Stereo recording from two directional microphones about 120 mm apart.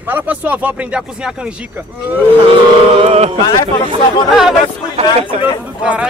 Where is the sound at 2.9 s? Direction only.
55° right (ahead or behind).